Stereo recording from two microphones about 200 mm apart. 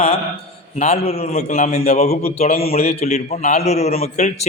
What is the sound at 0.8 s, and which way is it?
A man's voice, 30° left (ahead or behind).